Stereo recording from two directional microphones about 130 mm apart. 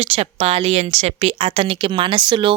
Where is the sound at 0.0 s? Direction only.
50° right (ahead or behind).